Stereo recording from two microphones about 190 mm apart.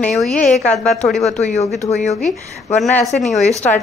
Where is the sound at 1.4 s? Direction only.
35° left (ahead or behind).